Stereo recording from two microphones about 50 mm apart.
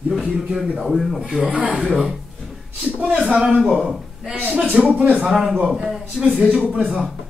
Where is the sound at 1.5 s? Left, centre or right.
Right.